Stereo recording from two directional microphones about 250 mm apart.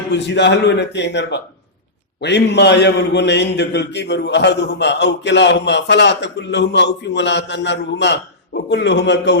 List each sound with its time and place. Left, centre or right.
0.1 s a man's voice: left